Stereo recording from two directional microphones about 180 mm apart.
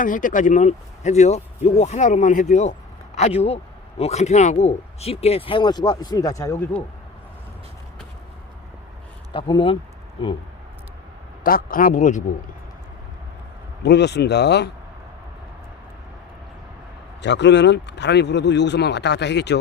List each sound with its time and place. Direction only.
0.0 s a man's voice: 45° left (ahead or behind); by 6.8 s 15° left (ahead or behind)
9.3 s speech: 30° left (ahead or behind)
11.4 s speech: 50° left (ahead or behind)
13.8 s speech: 70° left (ahead or behind)
17.2 s speech: 75° left (ahead or behind)